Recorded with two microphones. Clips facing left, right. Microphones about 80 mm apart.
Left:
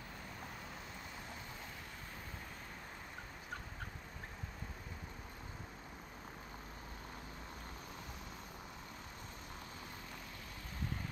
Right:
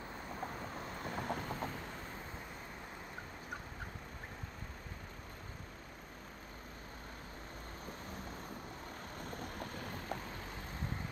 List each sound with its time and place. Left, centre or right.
0.4 s boat: right
9.4 s vehicle: right